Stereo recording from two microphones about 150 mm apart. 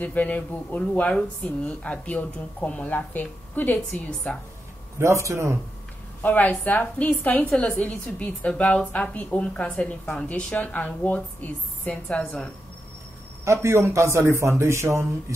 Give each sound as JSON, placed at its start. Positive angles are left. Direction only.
{"t": 0.0, "sound": "speech", "side_deg": 10}
{"t": 4.9, "sound": "a man's voice", "side_deg": -20}
{"t": 6.2, "sound": "speech", "side_deg": 10}
{"t": 13.5, "sound": "a man's voice", "side_deg": -20}